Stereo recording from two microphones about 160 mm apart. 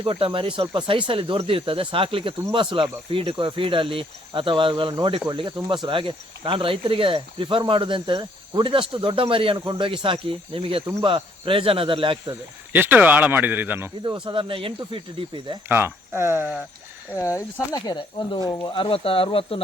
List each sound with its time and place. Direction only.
0.0 s speech: 30° right (ahead or behind)
12.7 s speech: 10° right (ahead or behind)
14.0 s speech: 25° right (ahead or behind)
15.7 s speech: 15° right (ahead or behind)
17.2 s speech: 20° left (ahead or behind); by 19.6 s 35° left (ahead or behind)